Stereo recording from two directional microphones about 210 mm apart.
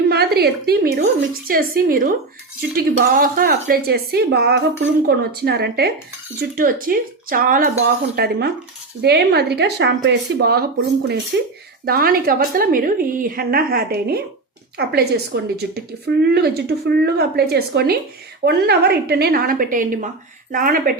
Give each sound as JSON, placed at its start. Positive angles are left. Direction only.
{"t": 0.1, "sound": "a woman's voice", "side_deg": -50}
{"t": 11.9, "sound": "a woman's voice", "side_deg": -45}